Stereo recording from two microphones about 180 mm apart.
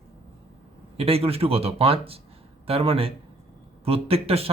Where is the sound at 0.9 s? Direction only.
35° right (ahead or behind).